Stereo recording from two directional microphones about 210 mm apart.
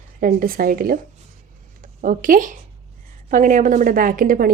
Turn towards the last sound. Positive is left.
turn(degrees=-45)  # may be behind; listen again after turning